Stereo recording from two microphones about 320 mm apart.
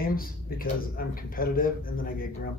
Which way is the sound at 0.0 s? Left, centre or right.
Left.